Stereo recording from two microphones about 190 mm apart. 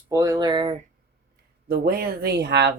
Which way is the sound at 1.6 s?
55° right (ahead or behind).